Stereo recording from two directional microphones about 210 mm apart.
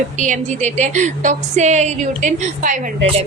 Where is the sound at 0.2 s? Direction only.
35° right (ahead or behind).